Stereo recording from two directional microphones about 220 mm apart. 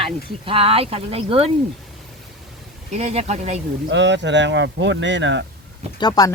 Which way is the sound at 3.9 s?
55° right (ahead or behind).